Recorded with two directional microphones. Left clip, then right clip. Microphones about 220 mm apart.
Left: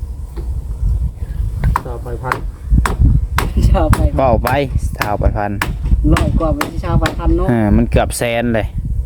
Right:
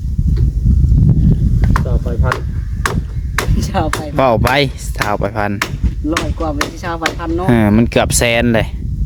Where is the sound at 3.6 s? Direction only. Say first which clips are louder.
Left 3 dB; 25° right (ahead or behind).